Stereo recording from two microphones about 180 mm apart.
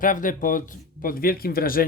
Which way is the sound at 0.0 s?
50° left (ahead or behind).